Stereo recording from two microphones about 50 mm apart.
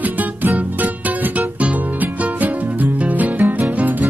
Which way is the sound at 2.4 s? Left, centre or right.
Right.